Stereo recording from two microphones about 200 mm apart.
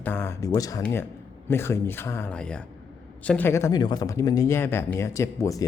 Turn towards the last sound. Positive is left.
turn(degrees=15)  # may be behind; listen again after turning